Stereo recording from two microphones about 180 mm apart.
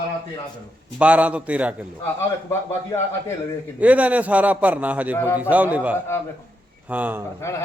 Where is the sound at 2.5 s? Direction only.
15° left (ahead or behind).